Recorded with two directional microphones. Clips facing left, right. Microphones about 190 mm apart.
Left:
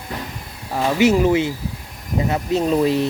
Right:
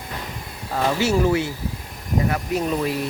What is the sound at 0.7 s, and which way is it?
Speech, 15° left (ahead or behind).